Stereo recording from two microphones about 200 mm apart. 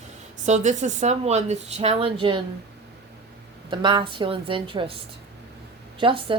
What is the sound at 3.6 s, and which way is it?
A woman's voice, 25° right (ahead or behind).